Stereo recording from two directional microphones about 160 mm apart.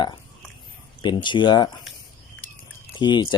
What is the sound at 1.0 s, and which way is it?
Speech, 30° left (ahead or behind).